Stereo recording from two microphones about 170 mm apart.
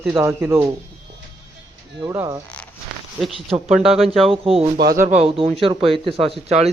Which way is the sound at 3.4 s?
Centre (ahead or behind).